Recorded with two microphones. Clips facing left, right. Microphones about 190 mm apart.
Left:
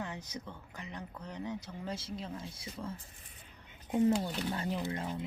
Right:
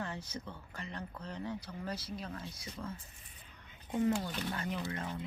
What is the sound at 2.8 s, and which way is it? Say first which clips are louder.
Speech: left 2 dB; 15° left (ahead or behind).